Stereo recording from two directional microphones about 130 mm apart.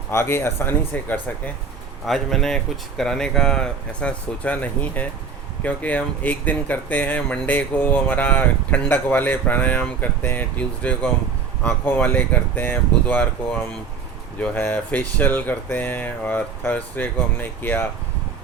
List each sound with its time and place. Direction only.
0.1 s speech: 20° left (ahead or behind)
2.0 s speech: centre (ahead or behind)